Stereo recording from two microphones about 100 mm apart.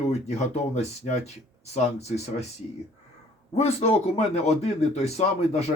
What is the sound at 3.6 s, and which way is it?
Speech, 85° left.